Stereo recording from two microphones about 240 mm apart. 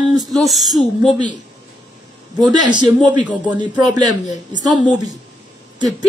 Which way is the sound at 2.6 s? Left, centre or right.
Centre.